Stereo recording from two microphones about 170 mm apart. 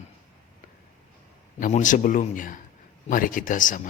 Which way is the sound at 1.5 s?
50° left (ahead or behind).